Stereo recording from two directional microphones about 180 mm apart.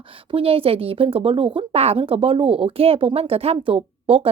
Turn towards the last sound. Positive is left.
turn(degrees=-30)  # may be behind; listen again after turning